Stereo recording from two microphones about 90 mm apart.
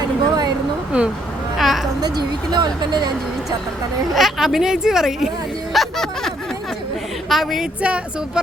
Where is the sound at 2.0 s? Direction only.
50° right (ahead or behind).